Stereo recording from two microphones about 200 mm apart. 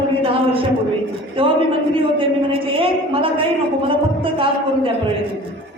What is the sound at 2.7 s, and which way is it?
A man's voice, 25° right (ahead or behind).